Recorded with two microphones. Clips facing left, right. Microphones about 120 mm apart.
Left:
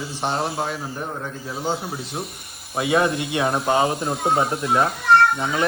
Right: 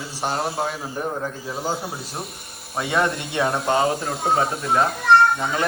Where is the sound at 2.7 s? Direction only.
10° left (ahead or behind).